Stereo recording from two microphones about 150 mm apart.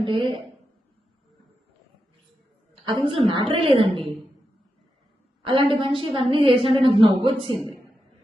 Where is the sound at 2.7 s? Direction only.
35° right (ahead or behind).